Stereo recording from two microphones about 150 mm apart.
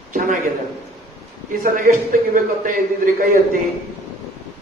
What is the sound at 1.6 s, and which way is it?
A man's voice, 65° right (ahead or behind).